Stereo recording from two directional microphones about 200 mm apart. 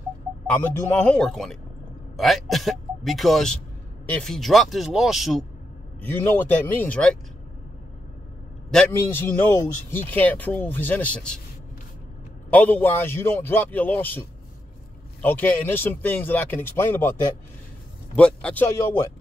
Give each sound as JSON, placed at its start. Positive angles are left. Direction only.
{"t": 0.5, "sound": "a man's voice", "side_deg": 10}
{"t": 5.9, "sound": "a man's voice", "side_deg": 10}
{"t": 8.6, "sound": "a man's voice", "side_deg": 5}
{"t": 12.4, "sound": "a man's voice", "side_deg": 10}
{"t": 15.2, "sound": "a man's voice", "side_deg": 10}
{"t": 18.1, "sound": "a man's voice", "side_deg": 5}